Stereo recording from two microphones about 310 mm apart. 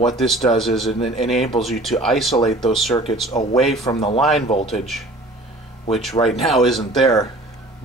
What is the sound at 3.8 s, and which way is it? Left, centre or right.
Speech, centre.